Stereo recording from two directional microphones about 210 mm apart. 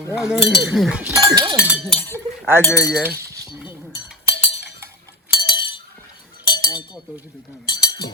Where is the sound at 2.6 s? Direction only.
15° left (ahead or behind).